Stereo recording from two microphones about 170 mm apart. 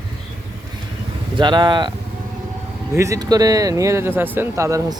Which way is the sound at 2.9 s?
20° right (ahead or behind).